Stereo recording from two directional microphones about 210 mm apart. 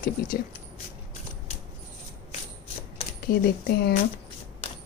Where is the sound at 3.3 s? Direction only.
45° left (ahead or behind).